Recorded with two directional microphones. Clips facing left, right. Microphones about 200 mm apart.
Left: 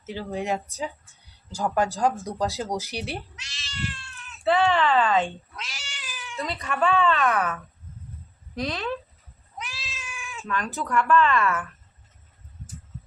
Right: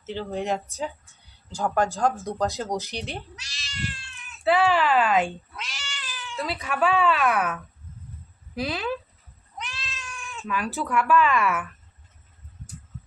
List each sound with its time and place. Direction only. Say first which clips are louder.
0.0 s speech: right 1 dB; 10° left (ahead or behind)
1.5 s speech: even; 10° left (ahead or behind)
3.3 s speech: right 2 dB; 35° right (ahead or behind)
4.3 s speech: right 1 dB; centre (ahead or behind)
5.3 s cat: right 1 dB; centre (ahead or behind)
6.3 s speech: right 1 dB; centre (ahead or behind)
9.6 s cat: right 1 dB; centre (ahead or behind)
10.8 s speech: left 1 dB; 5° right (ahead or behind)